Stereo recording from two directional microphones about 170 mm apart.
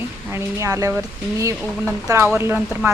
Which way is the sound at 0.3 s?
15° right (ahead or behind).